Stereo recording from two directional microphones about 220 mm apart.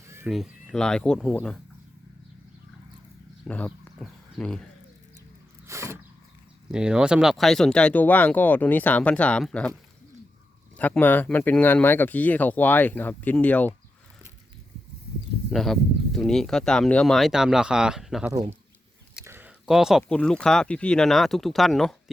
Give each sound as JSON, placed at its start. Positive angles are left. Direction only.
{"t": 0.1, "sound": "a sound", "side_deg": -10}
{"t": 0.3, "sound": "speech", "side_deg": 0}
{"t": 3.4, "sound": "speech", "side_deg": 5}
{"t": 5.6, "sound": "a sound", "side_deg": -10}
{"t": 6.7, "sound": "speech", "side_deg": -5}
{"t": 10.8, "sound": "speech", "side_deg": 5}
{"t": 15.4, "sound": "speech", "side_deg": 0}
{"t": 18.3, "sound": "speech", "side_deg": -20}